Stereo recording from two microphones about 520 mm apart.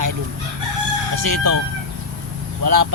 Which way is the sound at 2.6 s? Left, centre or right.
Right.